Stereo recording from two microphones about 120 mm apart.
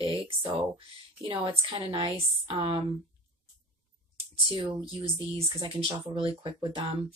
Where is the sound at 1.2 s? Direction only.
45° right (ahead or behind).